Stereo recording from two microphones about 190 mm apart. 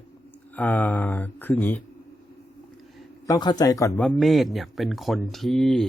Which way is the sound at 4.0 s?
Centre (ahead or behind).